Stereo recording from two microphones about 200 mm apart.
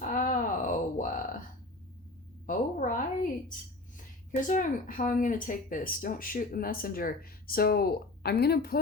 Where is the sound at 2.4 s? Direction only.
40° left (ahead or behind).